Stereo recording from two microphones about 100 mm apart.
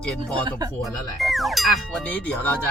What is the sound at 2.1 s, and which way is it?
Speech, 15° left (ahead or behind).